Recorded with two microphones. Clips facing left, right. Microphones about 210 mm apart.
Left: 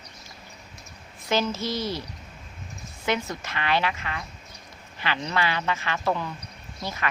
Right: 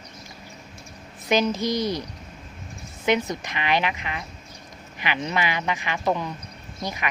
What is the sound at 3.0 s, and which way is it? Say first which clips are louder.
A woman's voice: right 5 dB; 20° right (ahead or behind).